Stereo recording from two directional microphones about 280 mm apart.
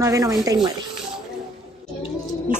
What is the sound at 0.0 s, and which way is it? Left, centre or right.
Speech, centre.